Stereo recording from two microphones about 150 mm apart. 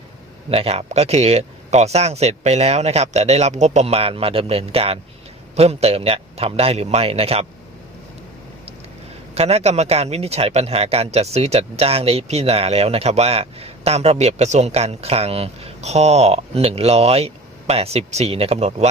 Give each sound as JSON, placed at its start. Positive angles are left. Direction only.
{"t": 0.5, "sound": "a man's voice", "side_deg": -40}
{"t": 9.3, "sound": "a man's voice", "side_deg": -45}